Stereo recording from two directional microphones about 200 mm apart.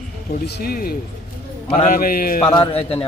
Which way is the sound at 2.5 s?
25° left (ahead or behind).